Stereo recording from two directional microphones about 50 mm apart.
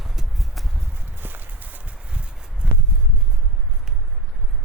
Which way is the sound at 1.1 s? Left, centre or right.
Right.